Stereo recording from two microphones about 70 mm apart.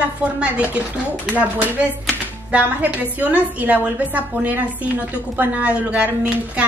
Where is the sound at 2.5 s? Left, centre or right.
Right.